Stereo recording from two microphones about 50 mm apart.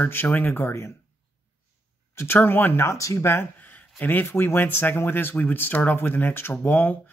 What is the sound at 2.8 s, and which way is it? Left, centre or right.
Speech, left.